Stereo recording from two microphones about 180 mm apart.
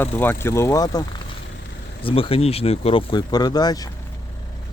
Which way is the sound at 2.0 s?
30° left (ahead or behind).